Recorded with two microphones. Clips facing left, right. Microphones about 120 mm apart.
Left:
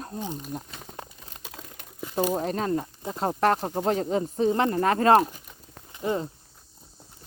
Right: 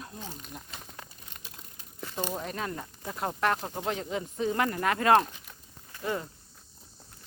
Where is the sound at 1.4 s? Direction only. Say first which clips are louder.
Left 7 dB; 90° left.